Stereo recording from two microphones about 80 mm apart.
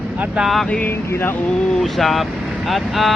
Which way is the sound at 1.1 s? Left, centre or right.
Left.